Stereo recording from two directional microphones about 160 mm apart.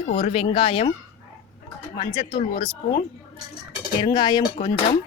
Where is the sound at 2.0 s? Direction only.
25° left (ahead or behind).